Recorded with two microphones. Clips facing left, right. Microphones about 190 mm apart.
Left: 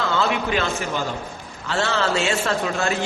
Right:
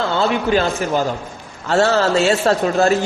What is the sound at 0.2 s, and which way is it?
A man's voice, 35° right (ahead or behind).